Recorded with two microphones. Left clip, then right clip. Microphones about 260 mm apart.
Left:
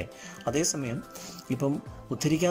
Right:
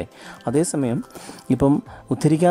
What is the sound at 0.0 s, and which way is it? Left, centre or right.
A man's voice, centre.